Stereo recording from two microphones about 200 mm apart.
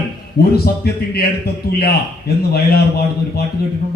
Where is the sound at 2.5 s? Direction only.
50° left (ahead or behind).